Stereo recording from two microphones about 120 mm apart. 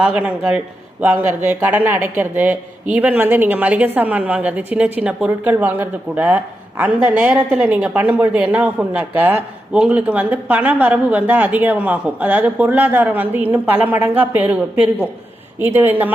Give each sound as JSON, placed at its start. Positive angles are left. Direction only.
{"t": 0.2, "sound": "a man's voice", "side_deg": -10}